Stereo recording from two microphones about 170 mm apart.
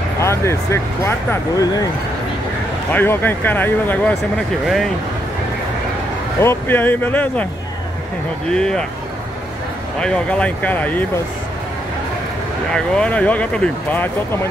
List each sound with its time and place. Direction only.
0.2 s speech: 15° left (ahead or behind)
2.9 s speech: 10° left (ahead or behind)
6.4 s speech: 15° left (ahead or behind)
8.5 s speech: 5° left (ahead or behind)
9.9 s speech: 5° left (ahead or behind)
12.7 s speech: 5° left (ahead or behind)